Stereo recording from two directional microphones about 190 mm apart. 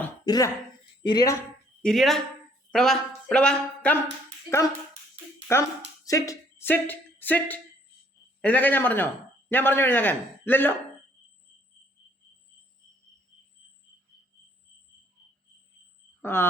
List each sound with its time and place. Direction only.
0.3 s speech: 20° left (ahead or behind)
1.8 s speech: centre (ahead or behind)
5.5 s a man's voice: 15° left (ahead or behind)
16.2 s speech: 10° left (ahead or behind)